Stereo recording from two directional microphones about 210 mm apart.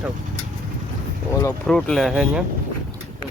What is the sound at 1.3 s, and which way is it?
Speech, 15° left (ahead or behind).